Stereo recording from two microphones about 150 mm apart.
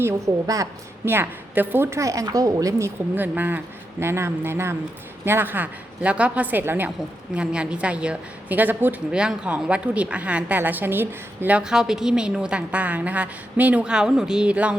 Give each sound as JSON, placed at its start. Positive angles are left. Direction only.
{"t": 0.0, "sound": "a woman's voice", "side_deg": -20}